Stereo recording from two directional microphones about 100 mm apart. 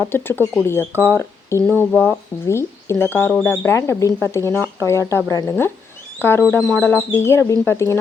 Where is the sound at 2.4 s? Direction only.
25° left (ahead or behind).